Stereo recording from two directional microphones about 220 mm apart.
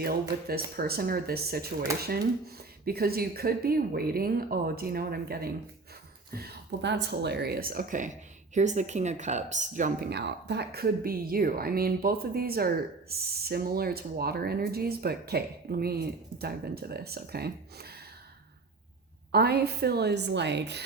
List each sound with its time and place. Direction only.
0.0 s speech: 45° right (ahead or behind)
19.3 s speech: 45° right (ahead or behind)